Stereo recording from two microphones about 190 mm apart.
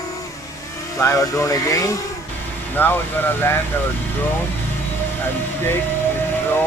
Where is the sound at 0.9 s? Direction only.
15° left (ahead or behind).